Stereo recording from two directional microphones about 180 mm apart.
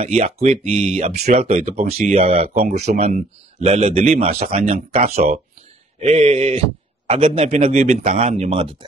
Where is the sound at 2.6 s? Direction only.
60° right (ahead or behind).